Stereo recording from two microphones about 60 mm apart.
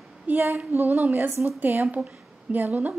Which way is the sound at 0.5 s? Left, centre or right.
Right.